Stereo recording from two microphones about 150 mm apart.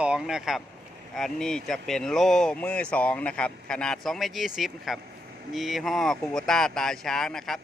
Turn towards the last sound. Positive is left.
turn(degrees=5)  # may be behind; listen again after turning